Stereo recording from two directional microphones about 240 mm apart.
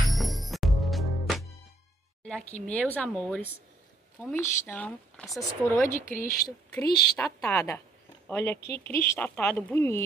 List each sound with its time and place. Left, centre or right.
0.1 s music: centre
2.6 s speech: centre
5.9 s speech: left
6.7 s speech: centre
8.6 s speech: left
8.9 s speech: centre